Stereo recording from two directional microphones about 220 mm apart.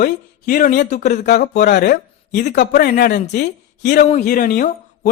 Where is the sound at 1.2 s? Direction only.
45° left (ahead or behind).